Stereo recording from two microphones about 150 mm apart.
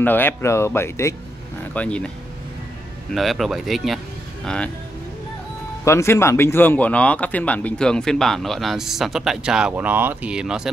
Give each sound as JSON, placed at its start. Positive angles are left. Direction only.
{"t": 0.0, "sound": "speech", "side_deg": 15}
{"t": 3.2, "sound": "speech", "side_deg": 0}
{"t": 5.9, "sound": "speech", "side_deg": 20}